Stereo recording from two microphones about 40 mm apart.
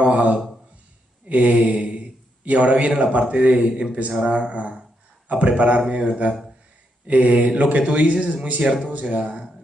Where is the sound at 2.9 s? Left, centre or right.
Right.